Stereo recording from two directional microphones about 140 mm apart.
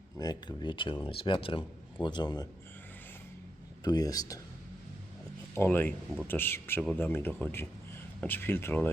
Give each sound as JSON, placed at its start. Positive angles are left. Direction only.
{"t": 0.2, "sound": "speech", "side_deg": 30}
{"t": 3.8, "sound": "speech", "side_deg": 25}
{"t": 5.5, "sound": "speech", "side_deg": 15}